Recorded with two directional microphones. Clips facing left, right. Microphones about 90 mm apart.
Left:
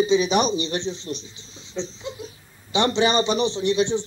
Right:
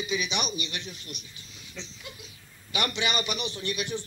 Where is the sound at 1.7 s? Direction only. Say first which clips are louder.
Left 13 dB; 30° left (ahead or behind).